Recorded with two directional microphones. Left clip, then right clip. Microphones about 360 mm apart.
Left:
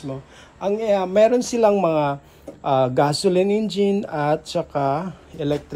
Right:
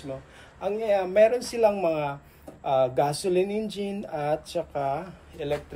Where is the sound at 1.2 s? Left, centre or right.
Left.